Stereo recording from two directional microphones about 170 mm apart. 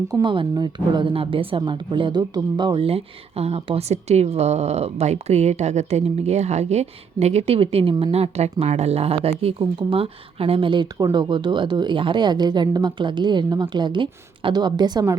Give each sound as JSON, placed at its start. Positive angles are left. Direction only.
{"t": 0.1, "sound": "a woman's voice", "side_deg": -25}